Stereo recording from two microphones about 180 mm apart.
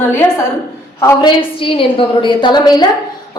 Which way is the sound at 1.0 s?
25° left (ahead or behind).